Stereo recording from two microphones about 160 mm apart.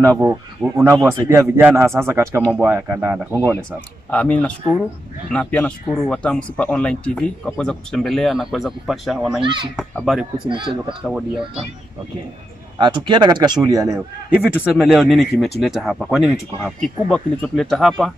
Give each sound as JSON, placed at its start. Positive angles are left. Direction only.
{"t": 0.2, "sound": "speech", "side_deg": -10}
{"t": 4.1, "sound": "speech", "side_deg": 10}
{"t": 9.4, "sound": "speech", "side_deg": -30}
{"t": 9.8, "sound": "speech", "side_deg": 0}
{"t": 10.5, "sound": "speech", "side_deg": -30}
{"t": 11.1, "sound": "speech", "side_deg": -5}
{"t": 12.7, "sound": "a man's voice", "side_deg": -30}
{"t": 14.4, "sound": "speech", "side_deg": -10}